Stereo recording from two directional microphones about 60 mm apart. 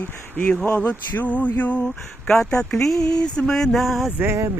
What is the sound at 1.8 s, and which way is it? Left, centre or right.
Speech, centre.